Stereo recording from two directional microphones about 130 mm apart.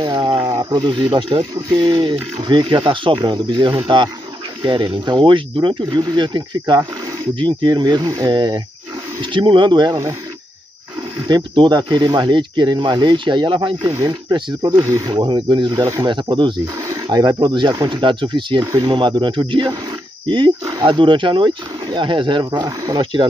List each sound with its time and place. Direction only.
0.0 s a sound: 35° right (ahead or behind)
0.5 s wild animals: 30° right (ahead or behind)
1.1 s speech: 35° right (ahead or behind)
11.2 s speech: 35° right (ahead or behind)